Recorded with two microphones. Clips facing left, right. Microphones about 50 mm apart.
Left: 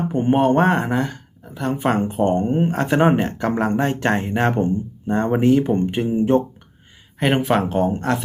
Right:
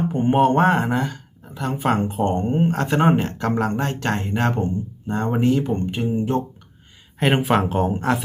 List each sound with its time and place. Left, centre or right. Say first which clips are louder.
0.1 s speech: left 1 dB; centre
3.7 s speech: left 4 dB; left
7.2 s speech: even; centre